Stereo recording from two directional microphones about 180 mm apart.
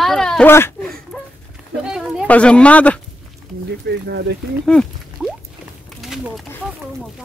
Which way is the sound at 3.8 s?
70° right (ahead or behind).